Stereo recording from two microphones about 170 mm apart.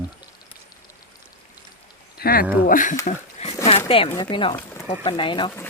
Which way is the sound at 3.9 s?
30° left (ahead or behind).